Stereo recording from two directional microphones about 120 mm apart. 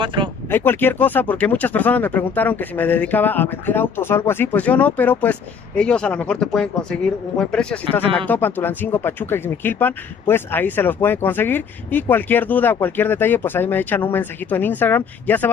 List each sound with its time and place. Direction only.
0.0 s speech: 45° right (ahead or behind)
0.5 s speech: 15° left (ahead or behind)